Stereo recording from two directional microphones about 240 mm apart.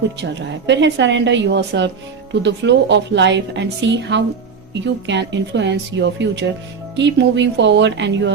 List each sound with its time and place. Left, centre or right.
0.7 s a woman's voice: right